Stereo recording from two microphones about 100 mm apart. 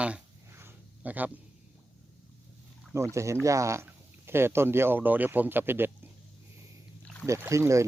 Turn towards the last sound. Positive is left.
turn(degrees=-30)  # may be behind; listen again after turning